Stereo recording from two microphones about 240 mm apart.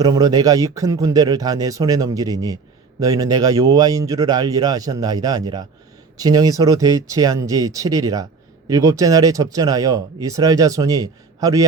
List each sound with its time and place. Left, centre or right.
0.0 s speech: centre